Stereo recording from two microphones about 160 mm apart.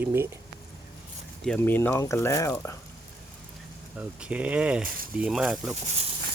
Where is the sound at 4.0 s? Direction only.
10° right (ahead or behind).